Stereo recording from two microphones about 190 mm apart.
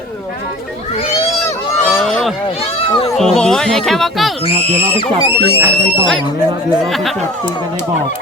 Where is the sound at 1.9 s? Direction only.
Centre (ahead or behind).